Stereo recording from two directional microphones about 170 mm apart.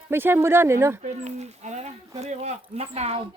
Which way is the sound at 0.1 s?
15° right (ahead or behind).